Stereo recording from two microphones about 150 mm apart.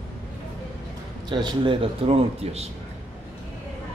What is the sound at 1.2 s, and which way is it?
Speech, 30° right (ahead or behind).